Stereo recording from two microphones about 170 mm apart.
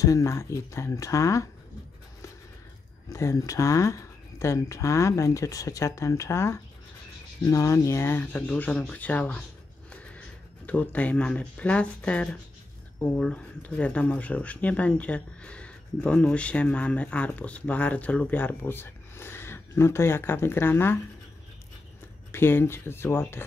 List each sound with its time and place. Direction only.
0.0 s speech: 20° left (ahead or behind)
3.1 s speech: 20° left (ahead or behind)
10.7 s speech: 10° left (ahead or behind)
22.3 s speech: 15° left (ahead or behind)